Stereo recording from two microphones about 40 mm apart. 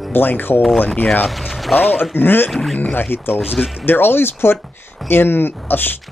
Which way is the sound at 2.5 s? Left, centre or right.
Centre.